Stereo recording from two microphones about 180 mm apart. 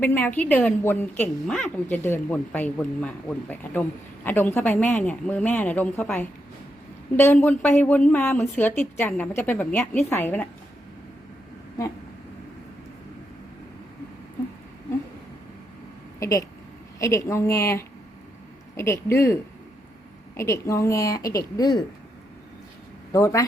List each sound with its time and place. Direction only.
0.0 s a woman's voice: 10° left (ahead or behind)
7.4 s a woman's voice: 10° left (ahead or behind)
17.0 s a woman's voice: 15° left (ahead or behind)
23.1 s a woman's voice: 15° left (ahead or behind)